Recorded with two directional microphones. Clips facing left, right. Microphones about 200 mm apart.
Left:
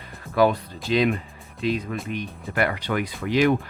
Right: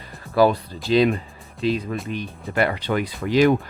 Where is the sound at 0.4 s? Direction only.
35° right (ahead or behind).